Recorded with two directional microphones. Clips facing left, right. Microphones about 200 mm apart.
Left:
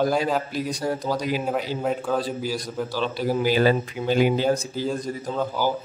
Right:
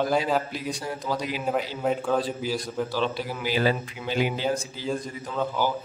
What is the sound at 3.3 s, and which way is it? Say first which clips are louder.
A man's voice: left 9 dB; 45° left (ahead or behind).